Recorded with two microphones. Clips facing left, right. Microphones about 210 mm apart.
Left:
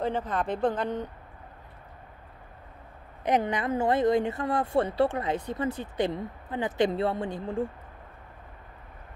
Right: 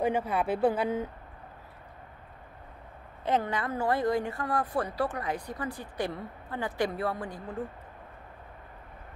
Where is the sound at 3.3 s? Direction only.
15° left (ahead or behind).